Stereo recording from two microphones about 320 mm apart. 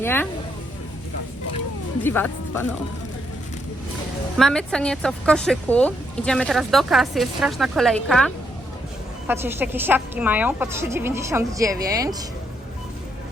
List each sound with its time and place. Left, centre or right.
0.0 s speech: centre
2.0 s speech: centre
4.4 s speech: centre